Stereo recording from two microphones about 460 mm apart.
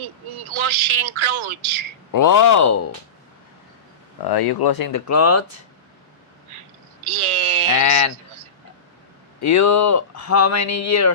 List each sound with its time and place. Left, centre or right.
0.0 s speech: right
2.1 s speech: left
4.2 s speech: left
7.0 s speech: right
7.7 s speech: left
9.5 s speech: left